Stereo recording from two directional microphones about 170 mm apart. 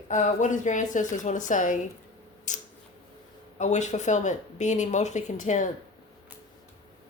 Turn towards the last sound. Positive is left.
turn(degrees=45)  # may be behind; listen again after turning